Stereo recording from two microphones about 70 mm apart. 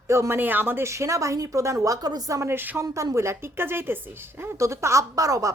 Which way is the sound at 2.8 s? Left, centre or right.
Right.